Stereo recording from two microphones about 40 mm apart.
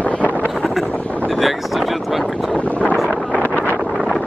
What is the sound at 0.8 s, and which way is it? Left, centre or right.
Vehicle, left.